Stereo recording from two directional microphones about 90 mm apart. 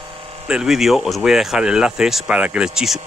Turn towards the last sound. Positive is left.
turn(degrees=-5)  # may be behind; listen again after turning